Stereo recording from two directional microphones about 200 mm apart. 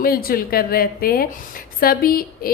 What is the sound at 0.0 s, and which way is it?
A woman's voice, 45° left (ahead or behind).